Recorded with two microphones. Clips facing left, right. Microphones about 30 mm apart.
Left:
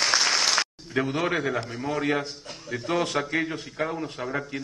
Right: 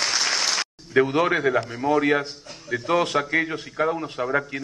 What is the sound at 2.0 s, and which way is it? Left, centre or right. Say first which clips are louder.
Speech: right 4 dB; centre.